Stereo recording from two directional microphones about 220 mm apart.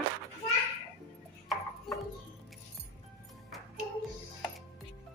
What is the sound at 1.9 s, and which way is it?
Music, centre (ahead or behind).